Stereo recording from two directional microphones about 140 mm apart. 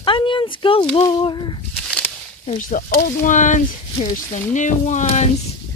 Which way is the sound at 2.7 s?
70° left (ahead or behind).